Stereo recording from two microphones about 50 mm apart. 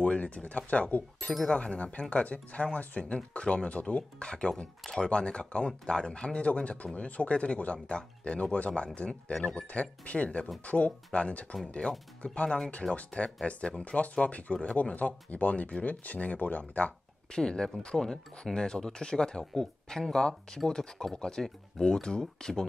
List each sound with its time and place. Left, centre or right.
0.0 s speech: left
17.3 s speech: centre